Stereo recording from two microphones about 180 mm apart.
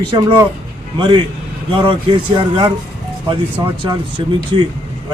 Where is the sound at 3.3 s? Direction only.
20° right (ahead or behind).